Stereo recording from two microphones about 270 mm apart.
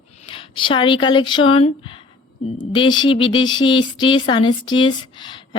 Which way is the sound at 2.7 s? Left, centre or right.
Centre.